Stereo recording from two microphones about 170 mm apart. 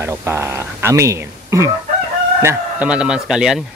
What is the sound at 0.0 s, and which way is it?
Speech, 15° right (ahead or behind).